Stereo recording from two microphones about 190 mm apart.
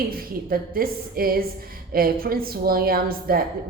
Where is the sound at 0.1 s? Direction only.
50° right (ahead or behind).